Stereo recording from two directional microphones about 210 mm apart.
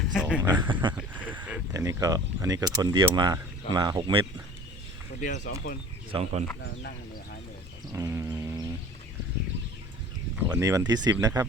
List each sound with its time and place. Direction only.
0.0 s a sound: centre (ahead or behind)
0.7 s speech: 20° right (ahead or behind)
0.9 s speech: 5° right (ahead or behind); by 4.3 s 20° right (ahead or behind)
5.2 s speech: 35° left (ahead or behind)
6.1 s speech: 25° right (ahead or behind)
7.9 s a sound: 15° right (ahead or behind)
10.3 s speech: 15° right (ahead or behind)